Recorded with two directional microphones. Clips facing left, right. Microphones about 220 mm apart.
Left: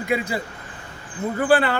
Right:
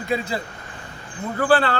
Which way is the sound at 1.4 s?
15° left (ahead or behind).